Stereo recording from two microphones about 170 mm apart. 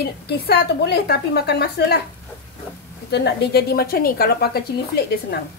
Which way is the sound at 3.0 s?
80° left.